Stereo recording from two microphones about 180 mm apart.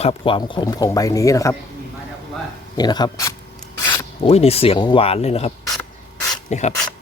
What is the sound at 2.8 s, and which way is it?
Speech, 25° left (ahead or behind).